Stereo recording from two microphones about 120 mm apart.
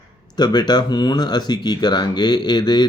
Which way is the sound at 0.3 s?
35° left (ahead or behind).